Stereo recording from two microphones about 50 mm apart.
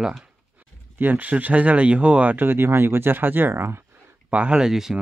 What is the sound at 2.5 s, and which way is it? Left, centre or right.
Speech, right.